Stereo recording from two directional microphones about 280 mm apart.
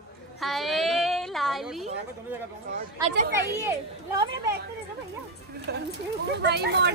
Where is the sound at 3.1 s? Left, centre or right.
Right.